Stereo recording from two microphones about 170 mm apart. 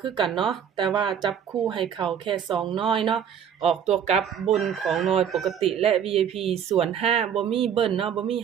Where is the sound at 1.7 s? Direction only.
30° right (ahead or behind).